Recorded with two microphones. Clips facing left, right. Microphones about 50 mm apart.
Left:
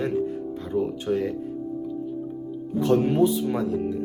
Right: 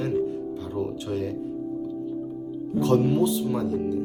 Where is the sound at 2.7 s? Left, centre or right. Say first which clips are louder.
Left 1 dB; centre.